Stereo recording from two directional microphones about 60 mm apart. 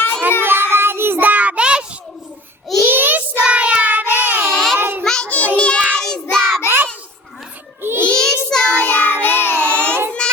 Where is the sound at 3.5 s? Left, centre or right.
Centre.